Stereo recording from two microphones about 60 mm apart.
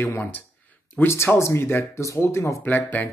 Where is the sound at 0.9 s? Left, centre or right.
Left.